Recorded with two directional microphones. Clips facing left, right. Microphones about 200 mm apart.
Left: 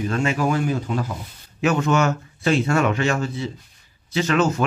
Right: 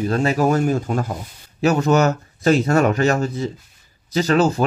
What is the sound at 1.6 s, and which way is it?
Speech, 35° right (ahead or behind).